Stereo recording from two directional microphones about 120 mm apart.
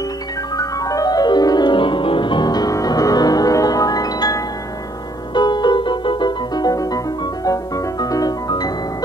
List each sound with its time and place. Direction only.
0.6 s music: 30° left (ahead or behind)